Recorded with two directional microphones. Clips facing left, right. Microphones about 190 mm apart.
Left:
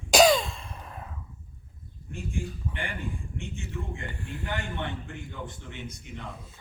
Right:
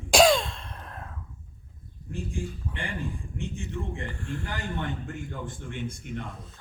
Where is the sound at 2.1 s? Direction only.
35° right (ahead or behind).